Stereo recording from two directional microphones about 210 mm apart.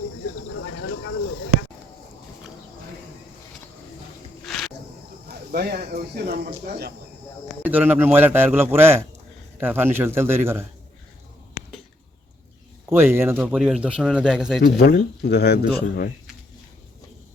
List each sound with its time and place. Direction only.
0.6 s a sound: 75° left (ahead or behind)
4.4 s a sound: centre (ahead or behind)
5.5 s speech: 50° right (ahead or behind)
7.6 s a man's voice: 10° right (ahead or behind)
12.9 s speech: 10° right (ahead or behind)
14.6 s speech: 45° left (ahead or behind)